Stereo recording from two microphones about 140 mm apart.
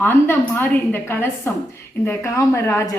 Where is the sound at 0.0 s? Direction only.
15° left (ahead or behind).